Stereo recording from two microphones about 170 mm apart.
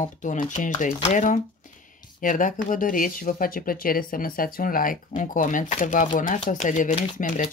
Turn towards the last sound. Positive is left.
turn(degrees=45)  # may be behind; listen again after turning